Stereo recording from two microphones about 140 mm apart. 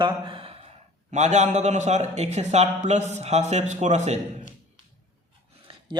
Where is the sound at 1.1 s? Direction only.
55° right (ahead or behind).